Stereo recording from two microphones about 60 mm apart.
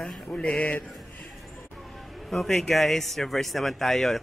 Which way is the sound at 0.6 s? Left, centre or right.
Left.